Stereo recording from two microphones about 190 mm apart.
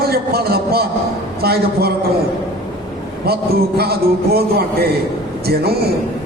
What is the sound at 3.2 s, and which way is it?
A man's voice, 55° right (ahead or behind).